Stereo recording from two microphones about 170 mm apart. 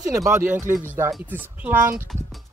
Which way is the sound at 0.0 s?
20° right (ahead or behind).